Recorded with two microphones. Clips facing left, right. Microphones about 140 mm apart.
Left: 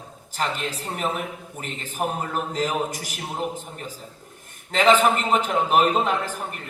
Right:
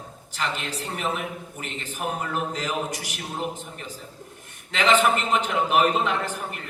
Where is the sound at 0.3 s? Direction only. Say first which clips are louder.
Left 2 dB; 45° left (ahead or behind).